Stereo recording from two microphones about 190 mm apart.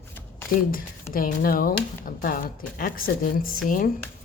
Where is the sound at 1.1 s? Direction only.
50° left (ahead or behind).